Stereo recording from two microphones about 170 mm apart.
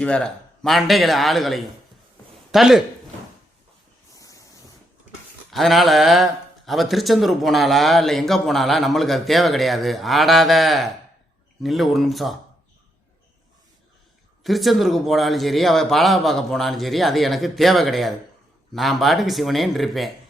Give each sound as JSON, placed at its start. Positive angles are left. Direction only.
{"t": 0.0, "sound": "a man's voice", "side_deg": 5}
{"t": 4.1, "sound": "spray", "side_deg": 20}
{"t": 5.5, "sound": "a man's voice", "side_deg": 0}
{"t": 14.4, "sound": "a man's voice", "side_deg": 0}